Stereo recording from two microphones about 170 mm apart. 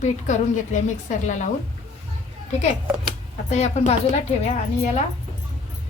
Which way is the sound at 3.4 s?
40° left (ahead or behind).